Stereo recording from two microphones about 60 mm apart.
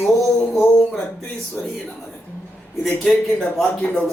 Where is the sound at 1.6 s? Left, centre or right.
Left.